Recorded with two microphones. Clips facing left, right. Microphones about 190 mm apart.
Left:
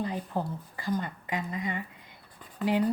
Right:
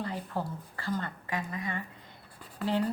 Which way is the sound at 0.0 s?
15° left (ahead or behind).